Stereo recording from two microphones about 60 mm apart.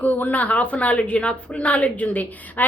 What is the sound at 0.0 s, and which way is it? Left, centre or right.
A woman's voice, left.